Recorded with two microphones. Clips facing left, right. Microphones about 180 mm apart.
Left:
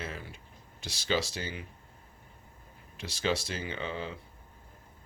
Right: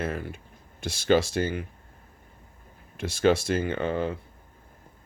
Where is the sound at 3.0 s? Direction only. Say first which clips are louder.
Right 9 dB; 50° right (ahead or behind).